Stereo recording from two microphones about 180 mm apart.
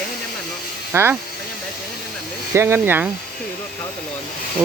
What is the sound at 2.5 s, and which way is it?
Speech, 15° right (ahead or behind).